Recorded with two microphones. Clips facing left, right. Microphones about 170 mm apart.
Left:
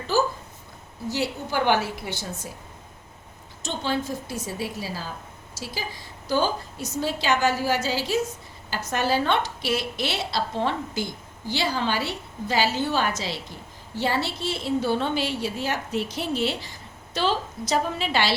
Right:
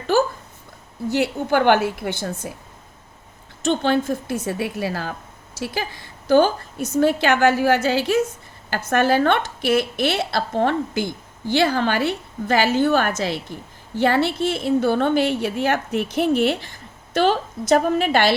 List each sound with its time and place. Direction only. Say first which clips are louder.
0.1 s a woman's voice: right 4 dB; 60° right (ahead or behind)
3.6 s a woman's voice: right 8 dB; 60° right (ahead or behind)